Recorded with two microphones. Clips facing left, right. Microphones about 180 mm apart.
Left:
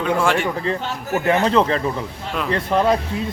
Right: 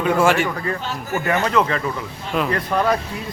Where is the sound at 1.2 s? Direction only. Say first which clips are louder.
Left 3 dB; 25° left (ahead or behind).